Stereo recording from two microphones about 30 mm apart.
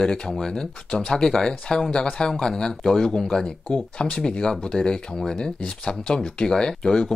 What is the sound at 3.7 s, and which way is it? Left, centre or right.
Speech, left.